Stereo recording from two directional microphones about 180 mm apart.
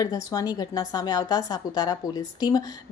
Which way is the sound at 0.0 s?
20° left (ahead or behind).